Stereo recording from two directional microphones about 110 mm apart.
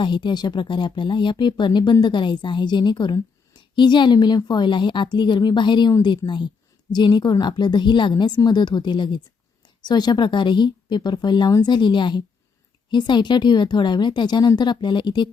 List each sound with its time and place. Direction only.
0.0 s speech: 45° left (ahead or behind)